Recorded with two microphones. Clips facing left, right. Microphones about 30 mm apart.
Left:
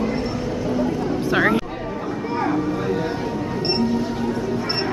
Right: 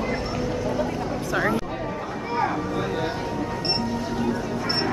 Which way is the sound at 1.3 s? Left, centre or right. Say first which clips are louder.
Left 5 dB; left.